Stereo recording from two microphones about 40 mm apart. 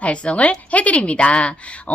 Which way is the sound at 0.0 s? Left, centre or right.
Left.